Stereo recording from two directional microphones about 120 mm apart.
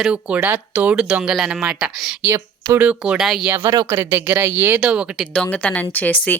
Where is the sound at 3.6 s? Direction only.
30° right (ahead or behind); by 5.3 s 5° right (ahead or behind).